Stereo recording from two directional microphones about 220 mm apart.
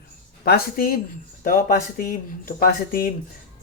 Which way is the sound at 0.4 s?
45° left (ahead or behind).